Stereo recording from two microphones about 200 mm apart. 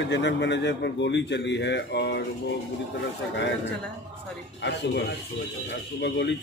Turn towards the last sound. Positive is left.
turn(degrees=60)  # may be behind; listen again after turning